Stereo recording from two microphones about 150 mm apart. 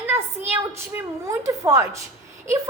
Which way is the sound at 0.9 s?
20° right (ahead or behind).